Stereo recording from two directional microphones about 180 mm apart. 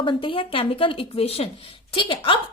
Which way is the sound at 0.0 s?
30° left (ahead or behind).